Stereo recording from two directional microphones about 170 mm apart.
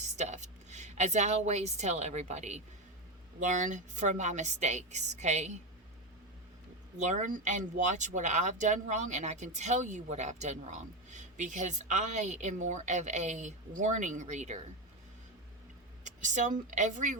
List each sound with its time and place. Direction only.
0.2 s a woman's voice: 45° right (ahead or behind)
7.0 s speech: 45° right (ahead or behind)
16.0 s speech: 45° right (ahead or behind)